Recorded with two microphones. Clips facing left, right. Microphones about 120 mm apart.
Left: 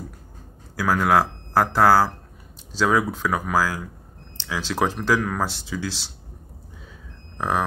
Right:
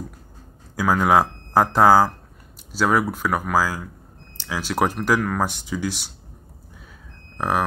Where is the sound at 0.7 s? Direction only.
15° right (ahead or behind).